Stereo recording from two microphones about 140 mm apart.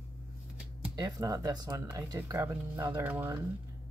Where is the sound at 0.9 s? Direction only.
25° right (ahead or behind).